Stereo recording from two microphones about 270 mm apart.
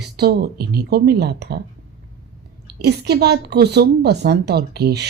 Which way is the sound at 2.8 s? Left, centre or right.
Right.